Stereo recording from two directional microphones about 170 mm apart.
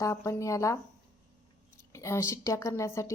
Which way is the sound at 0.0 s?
15° left (ahead or behind).